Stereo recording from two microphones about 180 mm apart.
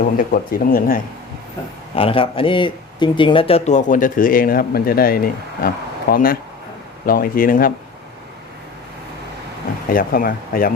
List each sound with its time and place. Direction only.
0.0 s speech: 50° left (ahead or behind)
2.0 s speech: 30° left (ahead or behind); by 7.7 s 50° left (ahead or behind)
9.9 s speech: 50° left (ahead or behind)